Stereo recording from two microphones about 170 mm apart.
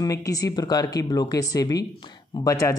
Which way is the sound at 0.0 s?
20° left (ahead or behind).